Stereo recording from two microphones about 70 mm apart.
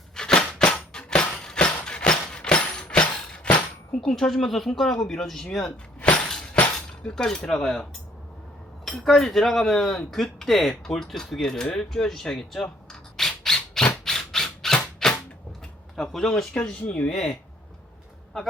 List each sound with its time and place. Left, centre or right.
0.2 s music: centre
4.0 s speech: centre
6.0 s a sound: centre
8.8 s speech: centre
12.9 s squawk: centre
16.0 s speech: centre